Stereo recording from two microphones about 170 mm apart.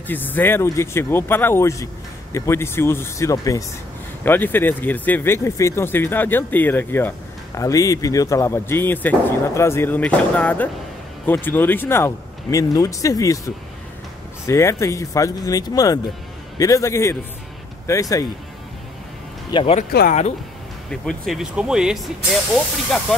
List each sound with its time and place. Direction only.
0.0 s speech: 10° left (ahead or behind)
14.4 s speech: 15° left (ahead or behind)
19.5 s speech: 30° left (ahead or behind)
19.9 s speech: 65° left (ahead or behind)
20.9 s speech: 5° left (ahead or behind)